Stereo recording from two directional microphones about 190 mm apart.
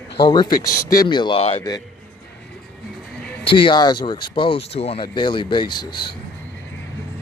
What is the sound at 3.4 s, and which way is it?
Speech, 25° left (ahead or behind).